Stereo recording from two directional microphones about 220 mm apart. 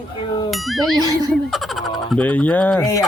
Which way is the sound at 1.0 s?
15° right (ahead or behind).